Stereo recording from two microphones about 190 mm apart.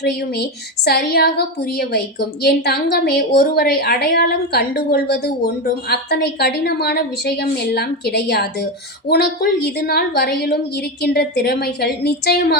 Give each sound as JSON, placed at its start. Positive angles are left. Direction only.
{"t": 0.9, "sound": "a woman's voice", "side_deg": 55}